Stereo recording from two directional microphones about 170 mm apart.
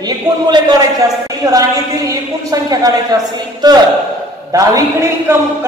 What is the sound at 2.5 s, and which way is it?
A man's voice, 20° right (ahead or behind).